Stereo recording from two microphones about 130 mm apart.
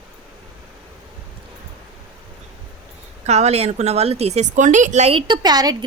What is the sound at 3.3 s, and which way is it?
A woman's voice, 55° right (ahead or behind).